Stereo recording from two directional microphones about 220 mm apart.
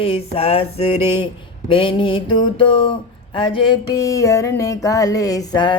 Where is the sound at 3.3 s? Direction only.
20° left (ahead or behind).